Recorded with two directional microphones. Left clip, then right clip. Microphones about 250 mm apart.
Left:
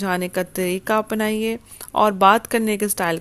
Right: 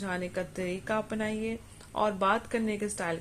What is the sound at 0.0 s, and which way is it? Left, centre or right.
Speech, left.